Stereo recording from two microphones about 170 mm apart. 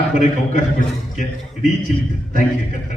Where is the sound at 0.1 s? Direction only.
45° left (ahead or behind).